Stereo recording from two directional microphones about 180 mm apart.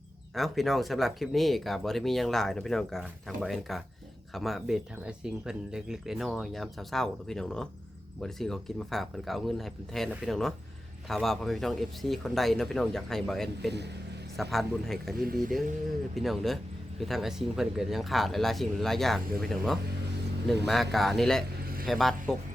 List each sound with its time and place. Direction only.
0.3 s speech: centre (ahead or behind)
13.7 s speech: 70° right (ahead or behind)
14.5 s speech: centre (ahead or behind)
15.3 s speech: 55° right (ahead or behind)
16.1 s speech: centre (ahead or behind)
20.9 s speech: centre (ahead or behind)